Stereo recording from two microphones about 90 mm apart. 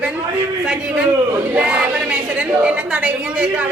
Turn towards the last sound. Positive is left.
turn(degrees=-15)  # may be behind; listen again after turning